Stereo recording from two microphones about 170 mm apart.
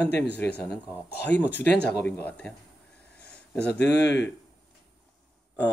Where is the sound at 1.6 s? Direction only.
70° left (ahead or behind).